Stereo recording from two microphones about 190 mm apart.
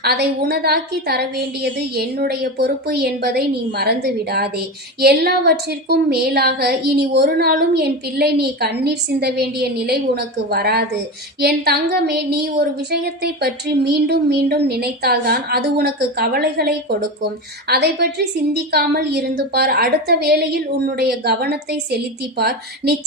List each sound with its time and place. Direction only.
0.0 s a woman's voice: 55° right (ahead or behind)